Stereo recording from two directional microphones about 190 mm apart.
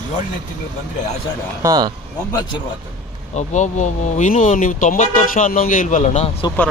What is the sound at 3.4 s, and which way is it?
Speech, 40° left (ahead or behind).